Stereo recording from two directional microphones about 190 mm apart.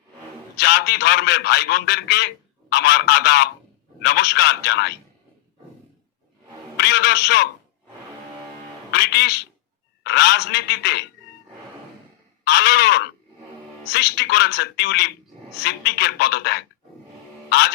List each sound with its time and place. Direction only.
0.6 s a man's voice: 60° left (ahead or behind)
6.7 s a man's voice: 60° left (ahead or behind)
8.9 s a man's voice: 60° left (ahead or behind)
12.5 s a man's voice: 60° left (ahead or behind)